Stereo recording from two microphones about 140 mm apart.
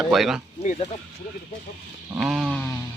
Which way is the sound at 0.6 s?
55° left (ahead or behind).